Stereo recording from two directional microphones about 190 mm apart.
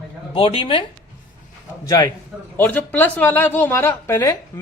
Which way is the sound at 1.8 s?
20° left (ahead or behind).